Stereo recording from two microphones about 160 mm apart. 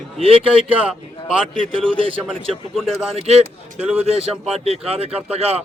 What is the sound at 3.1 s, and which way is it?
Speech, 40° right (ahead or behind).